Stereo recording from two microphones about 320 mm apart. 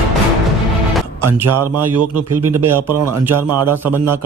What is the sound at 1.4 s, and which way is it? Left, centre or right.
Speech, right.